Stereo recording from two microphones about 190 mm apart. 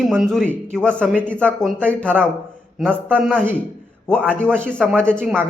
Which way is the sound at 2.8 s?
5° right (ahead or behind).